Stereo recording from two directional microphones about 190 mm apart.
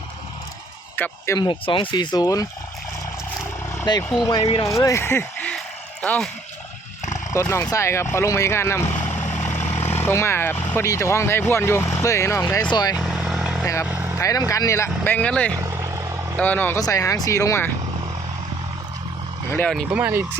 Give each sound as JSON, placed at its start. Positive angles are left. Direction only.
{"t": 0.9, "sound": "speech", "side_deg": 10}
{"t": 1.4, "sound": "speech", "side_deg": 25}
{"t": 3.8, "sound": "speech", "side_deg": 20}
{"t": 4.7, "sound": "a sound", "side_deg": 15}
{"t": 7.3, "sound": "speech", "side_deg": 15}
{"t": 10.0, "sound": "speech", "side_deg": 15}
{"t": 13.0, "sound": "vehicle", "side_deg": 0}
{"t": 14.2, "sound": "speech", "side_deg": 15}
{"t": 15.5, "sound": "vehicle", "side_deg": -15}
{"t": 16.4, "sound": "speech", "side_deg": 10}
{"t": 19.5, "sound": "speech", "side_deg": 10}
{"t": 19.9, "sound": "speech", "side_deg": -10}